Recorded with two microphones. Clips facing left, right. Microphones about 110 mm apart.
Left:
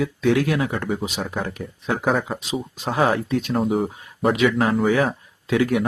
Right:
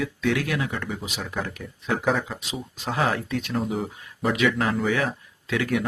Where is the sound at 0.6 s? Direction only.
45° left (ahead or behind).